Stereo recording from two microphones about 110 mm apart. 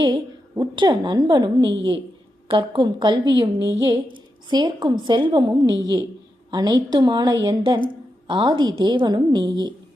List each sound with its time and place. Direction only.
0.6 s a woman's voice: 40° right (ahead or behind)